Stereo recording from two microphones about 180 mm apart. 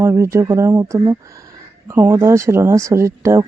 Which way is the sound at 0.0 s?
15° right (ahead or behind).